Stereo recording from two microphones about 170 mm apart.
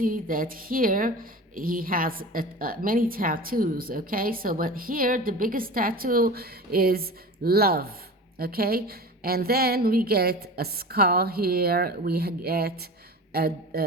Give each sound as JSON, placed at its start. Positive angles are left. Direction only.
{"t": 0.0, "sound": "a woman's voice", "side_deg": -55}